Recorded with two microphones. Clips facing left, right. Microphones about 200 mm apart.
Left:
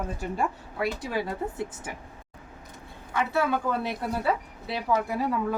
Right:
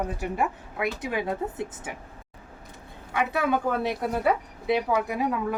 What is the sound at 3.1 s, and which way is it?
A woman's voice, 15° right (ahead or behind).